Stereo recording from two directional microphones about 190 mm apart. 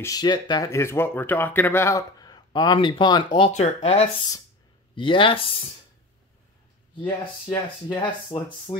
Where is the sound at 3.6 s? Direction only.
35° left (ahead or behind).